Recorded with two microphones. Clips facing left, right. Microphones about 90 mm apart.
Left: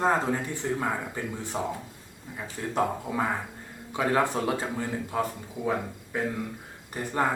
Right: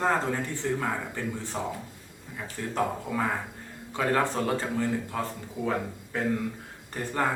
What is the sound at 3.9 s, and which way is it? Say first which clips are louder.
Speech: left 1 dB; 15° left (ahead or behind).